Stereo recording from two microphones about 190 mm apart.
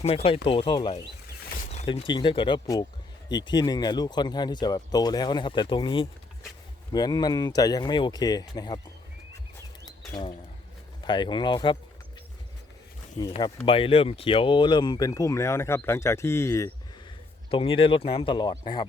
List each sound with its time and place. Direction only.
0.0 s speech: 30° left (ahead or behind)
1.7 s a sound: 35° left (ahead or behind)
2.0 s speech: 25° left (ahead or behind)
11.0 s speech: 25° left (ahead or behind)
13.2 s speech: 30° left (ahead or behind); by 16.7 s 15° left (ahead or behind)
17.5 s speech: 30° left (ahead or behind)